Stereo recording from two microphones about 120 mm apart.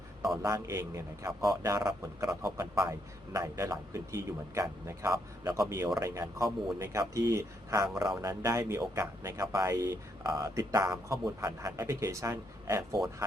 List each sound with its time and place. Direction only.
0.4 s a man's voice: 25° right (ahead or behind)